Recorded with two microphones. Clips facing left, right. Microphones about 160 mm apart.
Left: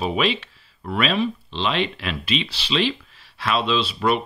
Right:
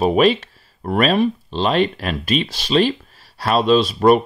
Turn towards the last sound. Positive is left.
turn(degrees=-45)  # may be behind; listen again after turning